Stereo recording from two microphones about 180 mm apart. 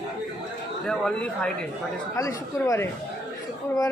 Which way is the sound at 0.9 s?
5° left (ahead or behind).